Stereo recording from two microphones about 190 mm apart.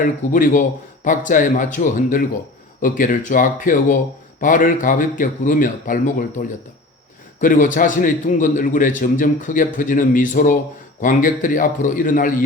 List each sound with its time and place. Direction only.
0.0 s a man's voice: 45° left (ahead or behind)
7.4 s a man's voice: 45° left (ahead or behind)